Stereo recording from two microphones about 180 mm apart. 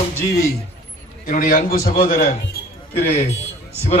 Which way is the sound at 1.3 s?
50° left (ahead or behind).